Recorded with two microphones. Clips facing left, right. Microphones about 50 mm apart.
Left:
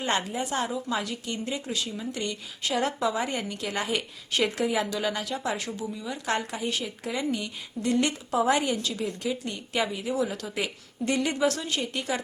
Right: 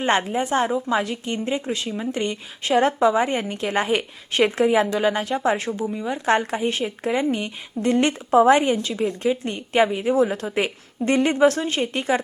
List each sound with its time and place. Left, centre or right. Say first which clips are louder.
0.0 s a woman's voice: right 7 dB; right